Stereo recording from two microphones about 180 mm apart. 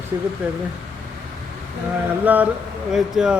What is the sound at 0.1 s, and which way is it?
Speech, 15° right (ahead or behind).